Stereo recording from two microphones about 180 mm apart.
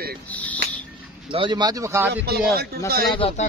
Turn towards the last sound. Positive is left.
turn(degrees=35)  # may be behind; listen again after turning